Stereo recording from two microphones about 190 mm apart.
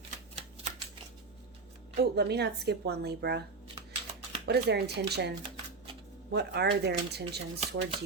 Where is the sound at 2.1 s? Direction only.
60° right (ahead or behind).